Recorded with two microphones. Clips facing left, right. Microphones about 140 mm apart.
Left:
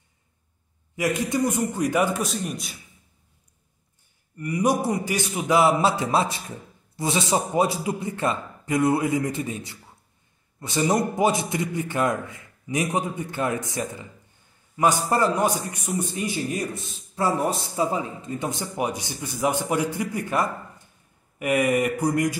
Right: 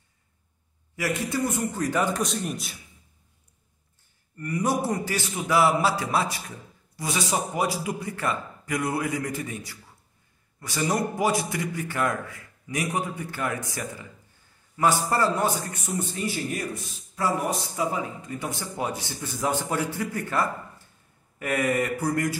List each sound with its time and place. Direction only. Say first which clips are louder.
0.9 s speech: left 4 dB; 20° left (ahead or behind)
2.2 s a man's voice: left 1 dB; centre (ahead or behind)
4.4 s a man's voice: left 3 dB; 10° left (ahead or behind)